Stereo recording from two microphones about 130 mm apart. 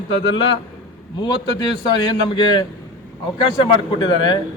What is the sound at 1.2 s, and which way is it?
A man's voice, 35° left (ahead or behind).